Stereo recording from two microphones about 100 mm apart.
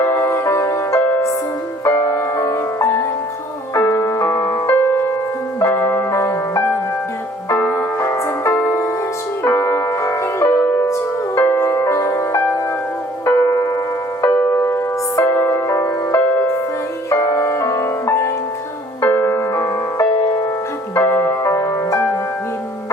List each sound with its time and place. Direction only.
0.0 s music: 25° left (ahead or behind)
3.8 s music: 30° left (ahead or behind)
13.4 s music: 35° left (ahead or behind)